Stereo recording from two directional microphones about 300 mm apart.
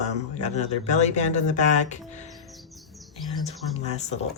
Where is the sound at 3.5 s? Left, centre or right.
Left.